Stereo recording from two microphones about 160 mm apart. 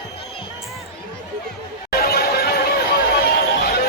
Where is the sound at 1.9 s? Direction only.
75° left (ahead or behind).